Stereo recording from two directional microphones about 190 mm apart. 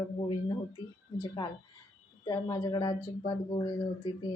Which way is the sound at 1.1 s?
25° left (ahead or behind).